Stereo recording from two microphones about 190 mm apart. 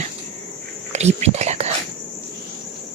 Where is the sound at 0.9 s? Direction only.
35° right (ahead or behind).